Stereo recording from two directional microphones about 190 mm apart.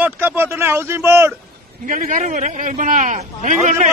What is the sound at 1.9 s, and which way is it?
A man's voice, 45° right (ahead or behind).